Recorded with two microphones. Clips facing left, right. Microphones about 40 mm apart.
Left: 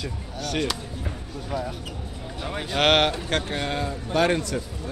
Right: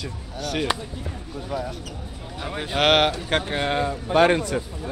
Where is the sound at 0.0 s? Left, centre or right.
Centre.